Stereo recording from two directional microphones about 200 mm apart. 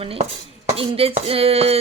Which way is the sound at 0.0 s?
30° right (ahead or behind).